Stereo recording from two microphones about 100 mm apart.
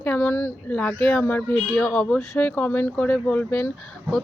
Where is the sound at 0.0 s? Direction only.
20° left (ahead or behind).